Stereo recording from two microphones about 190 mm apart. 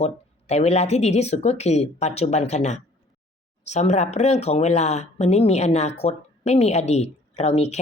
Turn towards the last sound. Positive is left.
turn(degrees=35)  # may be behind; listen again after turning